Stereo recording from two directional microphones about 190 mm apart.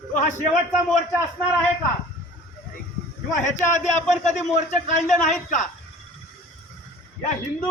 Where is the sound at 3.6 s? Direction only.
40° left (ahead or behind).